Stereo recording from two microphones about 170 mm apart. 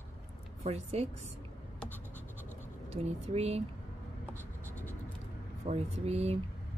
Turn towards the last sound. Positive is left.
turn(degrees=-40)  # may be behind; listen again after turning